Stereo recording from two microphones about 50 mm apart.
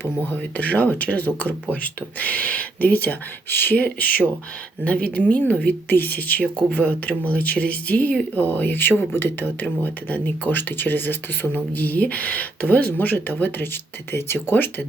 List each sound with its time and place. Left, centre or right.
0.0 s speech: left
3.8 s speech: left
14.1 s speech: left
14.5 s speech: left